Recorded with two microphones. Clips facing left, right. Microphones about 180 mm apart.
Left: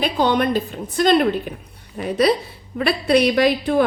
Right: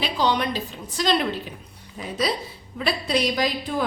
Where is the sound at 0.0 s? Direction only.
55° left (ahead or behind).